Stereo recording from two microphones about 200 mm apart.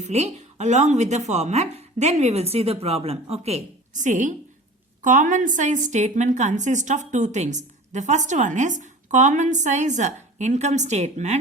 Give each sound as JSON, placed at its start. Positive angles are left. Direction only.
{"t": 0.0, "sound": "a woman's voice", "side_deg": -35}